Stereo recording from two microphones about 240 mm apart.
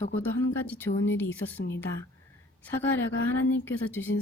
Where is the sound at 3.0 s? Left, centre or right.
Left.